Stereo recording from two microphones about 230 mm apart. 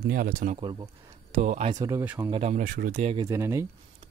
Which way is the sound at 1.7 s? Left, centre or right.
Centre.